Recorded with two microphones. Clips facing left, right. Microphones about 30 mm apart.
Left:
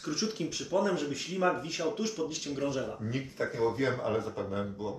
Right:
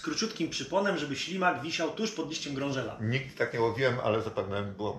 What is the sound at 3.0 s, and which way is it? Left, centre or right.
A man's voice, right.